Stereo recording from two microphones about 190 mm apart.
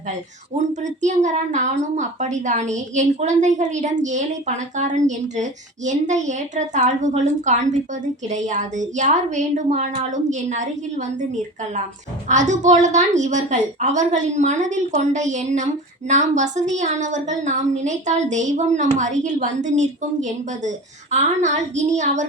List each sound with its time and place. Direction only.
0.7 s a child's voice: 40° right (ahead or behind)
12.3 s a child's voice: 40° right (ahead or behind)